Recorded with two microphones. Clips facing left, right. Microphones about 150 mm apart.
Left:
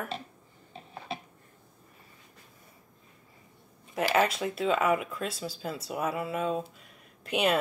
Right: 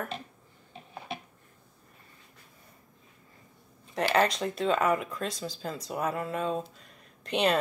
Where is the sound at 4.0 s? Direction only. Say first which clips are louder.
Even; 5° left (ahead or behind).